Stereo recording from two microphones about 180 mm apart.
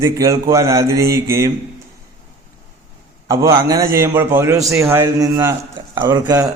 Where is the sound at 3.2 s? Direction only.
15° right (ahead or behind).